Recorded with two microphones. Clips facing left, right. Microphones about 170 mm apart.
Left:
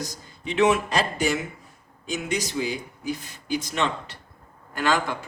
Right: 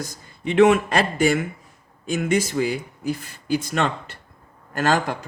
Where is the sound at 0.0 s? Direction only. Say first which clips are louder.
Right 4 dB; 55° right (ahead or behind).